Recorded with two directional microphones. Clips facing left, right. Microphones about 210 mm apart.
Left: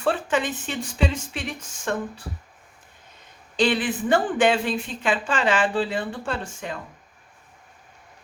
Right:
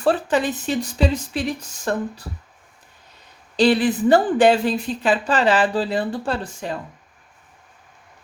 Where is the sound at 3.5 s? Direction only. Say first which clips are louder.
Right 6 dB; 35° right (ahead or behind).